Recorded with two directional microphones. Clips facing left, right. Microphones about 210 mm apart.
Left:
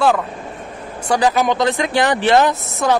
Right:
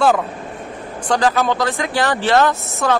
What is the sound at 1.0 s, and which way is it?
A man's voice, 10° left (ahead or behind).